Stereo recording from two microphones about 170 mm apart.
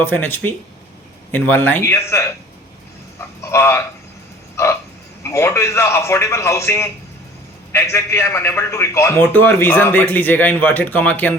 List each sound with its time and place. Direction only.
0.0 s a man's voice: 15° left (ahead or behind)
3.2 s a sound: 15° left (ahead or behind)
4.5 s frog: 15° left (ahead or behind)
5.2 s a man's voice: 15° left (ahead or behind)